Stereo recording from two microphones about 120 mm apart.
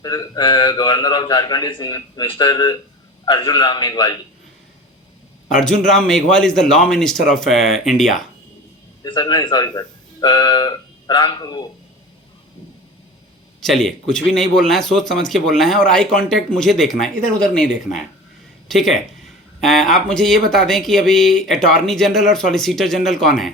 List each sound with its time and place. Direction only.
0.0 s a man's voice: 35° left (ahead or behind)
5.5 s a man's voice: 5° left (ahead or behind)
9.0 s speech: 40° left (ahead or behind)
13.6 s a man's voice: centre (ahead or behind)